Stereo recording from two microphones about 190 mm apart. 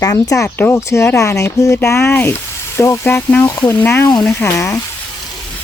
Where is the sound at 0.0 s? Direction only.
20° left (ahead or behind).